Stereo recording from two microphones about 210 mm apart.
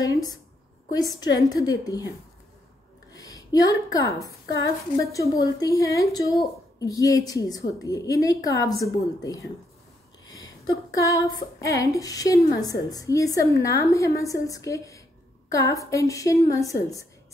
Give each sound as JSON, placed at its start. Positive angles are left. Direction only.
{"t": 0.0, "sound": "a woman's voice", "side_deg": 15}
{"t": 3.1, "sound": "a woman's voice", "side_deg": 15}
{"t": 10.7, "sound": "a woman's voice", "side_deg": 15}